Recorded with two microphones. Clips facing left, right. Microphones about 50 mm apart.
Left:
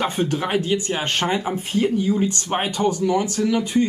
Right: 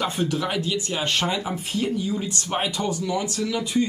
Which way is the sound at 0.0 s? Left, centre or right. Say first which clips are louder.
Left 2 dB; left.